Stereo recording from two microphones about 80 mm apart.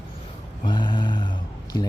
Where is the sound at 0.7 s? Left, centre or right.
Left.